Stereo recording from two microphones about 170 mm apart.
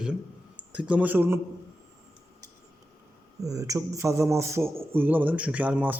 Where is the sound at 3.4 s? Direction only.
20° right (ahead or behind).